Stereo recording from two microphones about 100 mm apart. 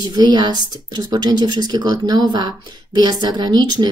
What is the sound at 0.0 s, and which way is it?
A woman's voice, 45° right (ahead or behind).